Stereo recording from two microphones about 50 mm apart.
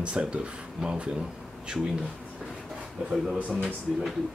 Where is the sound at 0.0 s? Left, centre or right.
Right.